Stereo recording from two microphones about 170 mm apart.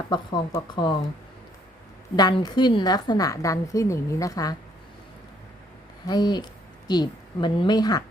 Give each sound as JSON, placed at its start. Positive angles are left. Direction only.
{"t": 0.1, "sound": "a woman's voice", "side_deg": 25}
{"t": 2.1, "sound": "a woman's voice", "side_deg": 25}
{"t": 6.1, "sound": "a woman's voice", "side_deg": 25}